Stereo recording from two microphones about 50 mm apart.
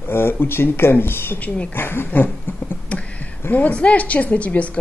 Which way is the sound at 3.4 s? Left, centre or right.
Left.